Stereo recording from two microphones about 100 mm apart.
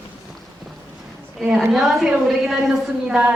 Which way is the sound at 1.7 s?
Centre (ahead or behind).